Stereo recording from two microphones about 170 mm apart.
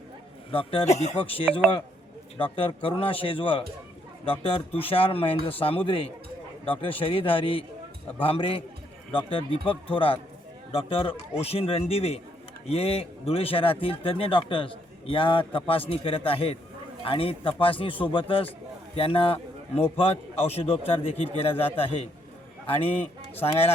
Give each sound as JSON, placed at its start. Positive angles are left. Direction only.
{"t": 0.5, "sound": "speech", "side_deg": 30}
{"t": 4.8, "sound": "speech", "side_deg": 35}
{"t": 9.6, "sound": "a man's voice", "side_deg": 30}